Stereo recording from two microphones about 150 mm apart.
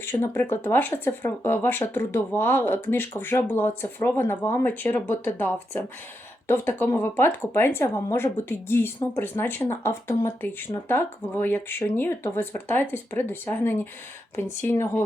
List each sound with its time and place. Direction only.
0.0 s speech: 15° left (ahead or behind)